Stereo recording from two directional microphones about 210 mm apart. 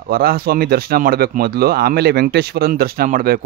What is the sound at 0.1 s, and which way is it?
Speech, 45° right (ahead or behind).